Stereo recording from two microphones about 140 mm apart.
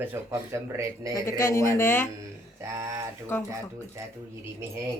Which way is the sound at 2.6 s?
20° right (ahead or behind).